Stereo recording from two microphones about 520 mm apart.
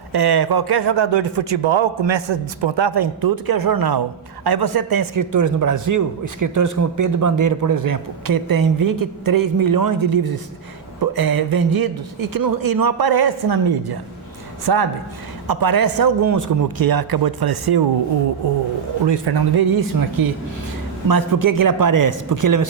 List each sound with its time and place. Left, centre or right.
0.1 s a man's voice: right
19.0 s a man's voice: right